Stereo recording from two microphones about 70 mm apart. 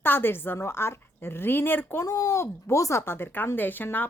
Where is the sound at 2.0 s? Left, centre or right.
Left.